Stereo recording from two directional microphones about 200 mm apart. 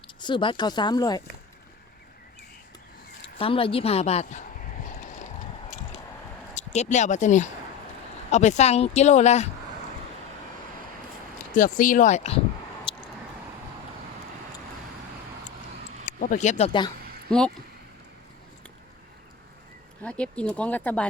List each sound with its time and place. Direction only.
0.2 s a woman's voice: 25° left (ahead or behind)
3.3 s a woman's voice: 25° left (ahead or behind)
6.5 s speech: 35° left (ahead or behind)
11.5 s speech: 45° left (ahead or behind)
16.0 s speech: 40° left (ahead or behind)
17.3 s speech: 5° left (ahead or behind)
20.0 s speech: 5° left (ahead or behind)